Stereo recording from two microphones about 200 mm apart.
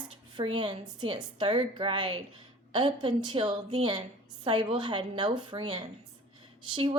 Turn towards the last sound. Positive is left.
turn(degrees=-25)  # may be behind; listen again after turning